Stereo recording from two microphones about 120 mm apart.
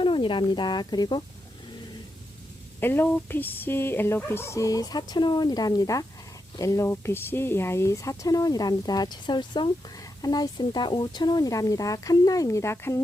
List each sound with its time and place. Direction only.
0.0 s speech: 45° left (ahead or behind)
2.8 s speech: 20° left (ahead or behind)